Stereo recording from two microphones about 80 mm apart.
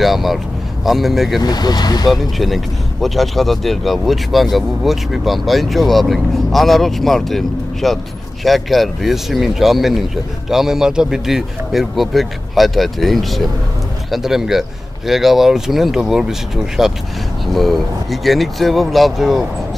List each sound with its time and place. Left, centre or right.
0.0 s vehicle: centre
0.8 s speech: centre
1.4 s speech: left
2.0 s speech: centre